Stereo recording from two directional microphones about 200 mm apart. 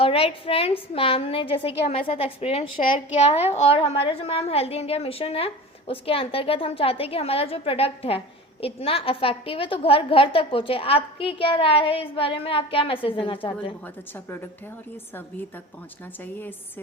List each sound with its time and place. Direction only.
0.0 s a woman's voice: 30° left (ahead or behind)
13.8 s a woman's voice: 10° left (ahead or behind)
16.2 s a woman's voice: 10° left (ahead or behind)